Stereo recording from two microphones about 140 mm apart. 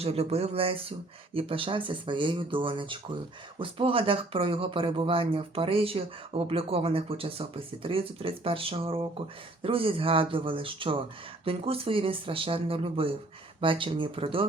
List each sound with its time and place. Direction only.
0.0 s speech: 45° right (ahead or behind)